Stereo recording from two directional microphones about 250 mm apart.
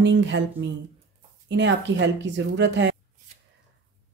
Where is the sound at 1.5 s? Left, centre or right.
Right.